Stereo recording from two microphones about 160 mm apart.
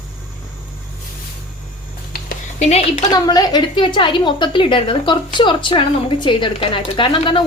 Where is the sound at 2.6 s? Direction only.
45° left (ahead or behind).